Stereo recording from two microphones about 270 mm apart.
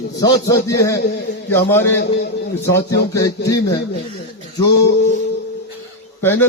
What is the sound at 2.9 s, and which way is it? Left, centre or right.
Music, left.